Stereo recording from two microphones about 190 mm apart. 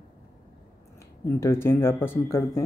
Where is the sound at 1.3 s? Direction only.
15° left (ahead or behind).